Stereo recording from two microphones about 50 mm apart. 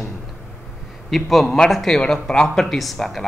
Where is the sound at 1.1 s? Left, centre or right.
Centre.